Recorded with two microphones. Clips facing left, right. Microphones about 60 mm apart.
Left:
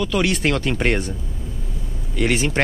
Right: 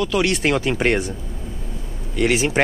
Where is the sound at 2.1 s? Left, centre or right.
Centre.